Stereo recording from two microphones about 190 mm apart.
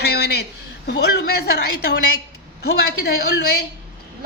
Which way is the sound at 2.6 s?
55° left (ahead or behind).